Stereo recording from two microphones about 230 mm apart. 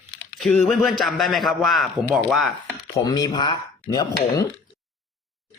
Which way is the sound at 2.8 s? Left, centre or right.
Centre.